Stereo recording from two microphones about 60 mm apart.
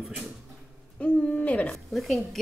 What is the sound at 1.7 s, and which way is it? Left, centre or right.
Speech, centre.